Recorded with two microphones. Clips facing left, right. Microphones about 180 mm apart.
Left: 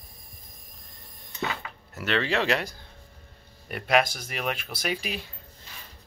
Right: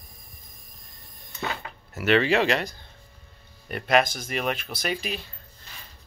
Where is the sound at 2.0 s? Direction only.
10° right (ahead or behind).